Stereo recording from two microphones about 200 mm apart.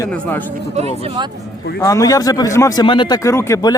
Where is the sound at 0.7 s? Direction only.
30° right (ahead or behind).